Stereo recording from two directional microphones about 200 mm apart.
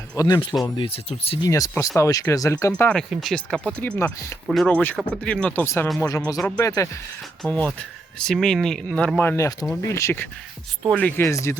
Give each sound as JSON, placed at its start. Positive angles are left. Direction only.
{"t": 0.2, "sound": "speech", "side_deg": 20}
{"t": 1.5, "sound": "speech", "side_deg": 15}
{"t": 7.4, "sound": "speech", "side_deg": 5}